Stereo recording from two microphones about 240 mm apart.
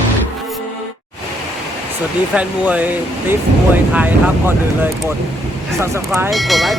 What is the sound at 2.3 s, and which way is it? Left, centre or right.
Speech, centre.